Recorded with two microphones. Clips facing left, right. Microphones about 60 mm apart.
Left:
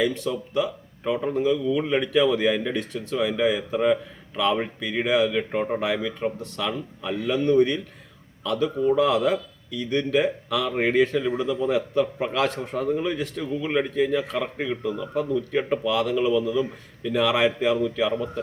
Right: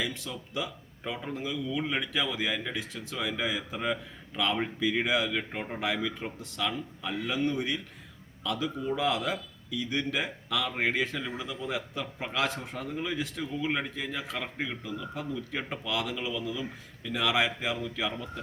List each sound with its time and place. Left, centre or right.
0.0 s speech: centre
5.5 s speech: centre
5.8 s speech: centre